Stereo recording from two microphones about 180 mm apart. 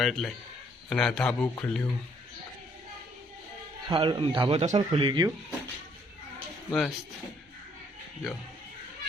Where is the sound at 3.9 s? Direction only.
30° right (ahead or behind).